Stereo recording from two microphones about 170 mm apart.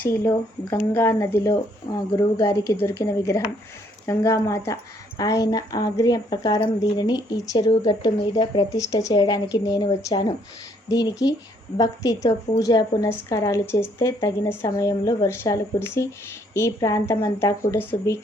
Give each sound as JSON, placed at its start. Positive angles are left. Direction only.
{"t": 0.0, "sound": "speech", "side_deg": 15}